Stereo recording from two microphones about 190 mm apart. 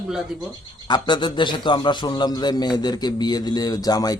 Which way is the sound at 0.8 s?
25° left (ahead or behind).